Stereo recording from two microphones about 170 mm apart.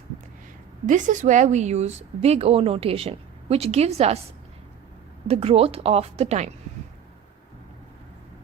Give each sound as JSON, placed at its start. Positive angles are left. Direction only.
{"t": 0.9, "sound": "speech", "side_deg": -45}
{"t": 5.3, "sound": "speech", "side_deg": -35}